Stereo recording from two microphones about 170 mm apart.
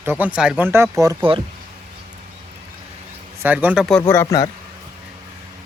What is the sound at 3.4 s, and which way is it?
Speech, 10° right (ahead or behind).